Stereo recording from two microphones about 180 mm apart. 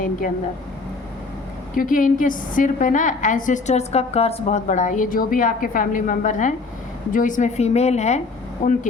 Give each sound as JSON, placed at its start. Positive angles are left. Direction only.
{"t": 1.7, "sound": "a woman's voice", "side_deg": 50}
{"t": 8.6, "sound": "a woman's voice", "side_deg": 50}